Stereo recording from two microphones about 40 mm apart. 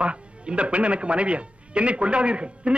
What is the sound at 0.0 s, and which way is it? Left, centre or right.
Speech, right.